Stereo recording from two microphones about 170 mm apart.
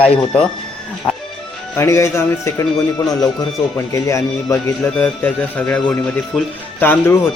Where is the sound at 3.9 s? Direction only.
15° left (ahead or behind).